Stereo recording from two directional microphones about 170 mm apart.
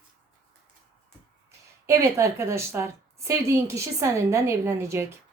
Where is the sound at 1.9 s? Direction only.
20° right (ahead or behind).